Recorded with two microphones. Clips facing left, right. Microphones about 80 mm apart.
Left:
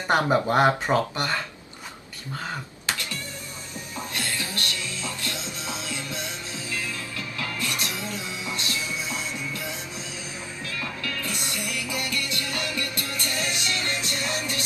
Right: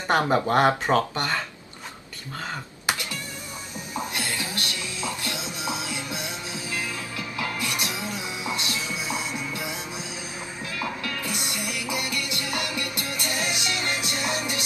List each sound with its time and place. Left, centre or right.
0.1 s speech: centre
2.8 s cat: centre
3.9 s music: centre
10.8 s music: centre